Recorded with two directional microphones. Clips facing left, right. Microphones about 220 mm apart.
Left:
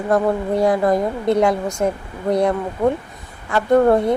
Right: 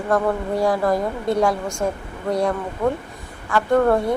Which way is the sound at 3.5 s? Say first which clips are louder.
Left 3 dB; 25° left (ahead or behind).